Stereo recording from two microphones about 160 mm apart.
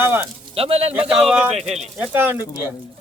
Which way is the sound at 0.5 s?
40° right (ahead or behind).